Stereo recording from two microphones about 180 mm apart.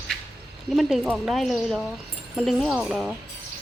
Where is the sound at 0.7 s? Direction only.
Centre (ahead or behind).